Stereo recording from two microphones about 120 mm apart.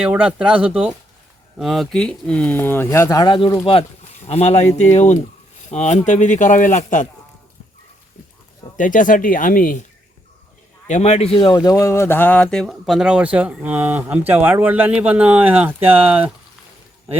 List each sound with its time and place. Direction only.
0.0 s speech: 10° right (ahead or behind); by 3.5 s 40° left (ahead or behind)
4.3 s speech: 65° left (ahead or behind)
6.1 s a man's voice: 90° left
8.8 s a man's voice: 90° left
10.8 s speech: 75° left (ahead or behind); by 16.3 s 15° right (ahead or behind)